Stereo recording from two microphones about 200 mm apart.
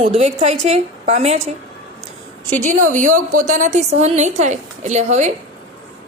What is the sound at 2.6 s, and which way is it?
A woman's voice, 40° right (ahead or behind).